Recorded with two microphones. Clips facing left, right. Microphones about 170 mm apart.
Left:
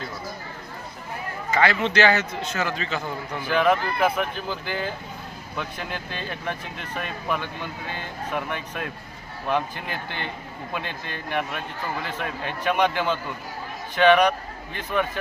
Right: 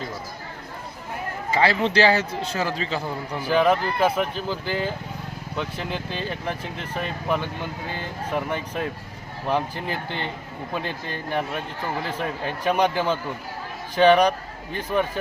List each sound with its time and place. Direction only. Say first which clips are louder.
1.5 s speech: right 1 dB; 30° right (ahead or behind)
4.1 s speech: right 2 dB; centre (ahead or behind)
4.4 s speech: right 3 dB; 30° right (ahead or behind)